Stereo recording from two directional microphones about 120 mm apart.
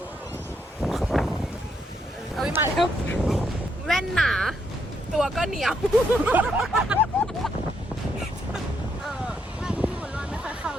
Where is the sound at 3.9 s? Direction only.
Centre (ahead or behind).